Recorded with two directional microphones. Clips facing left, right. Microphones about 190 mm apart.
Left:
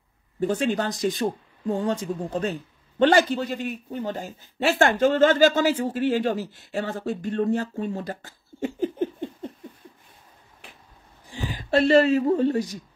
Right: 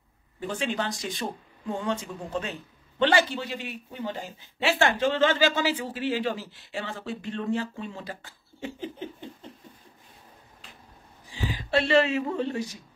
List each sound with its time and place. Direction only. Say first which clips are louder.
0.4 s a man's voice: left 6 dB; 45° left (ahead or behind)
11.5 s a man's voice: left 5 dB; 45° left (ahead or behind)